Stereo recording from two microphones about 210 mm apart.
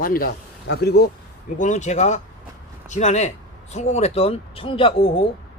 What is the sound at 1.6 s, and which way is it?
Speech, 35° left (ahead or behind).